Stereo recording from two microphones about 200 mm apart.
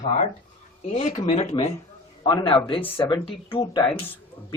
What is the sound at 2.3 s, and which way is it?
A man's voice, 20° left (ahead or behind).